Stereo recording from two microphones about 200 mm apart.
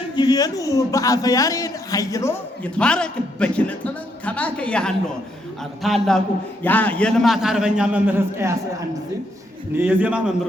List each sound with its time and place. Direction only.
0.2 s a man's voice: 20° left (ahead or behind); by 8.5 s 10° right (ahead or behind)
9.7 s a man's voice: 10° right (ahead or behind)